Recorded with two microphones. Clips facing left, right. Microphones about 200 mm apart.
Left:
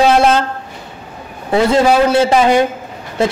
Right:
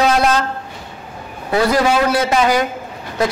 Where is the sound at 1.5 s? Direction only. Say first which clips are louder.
Left 4 dB; 25° left (ahead or behind).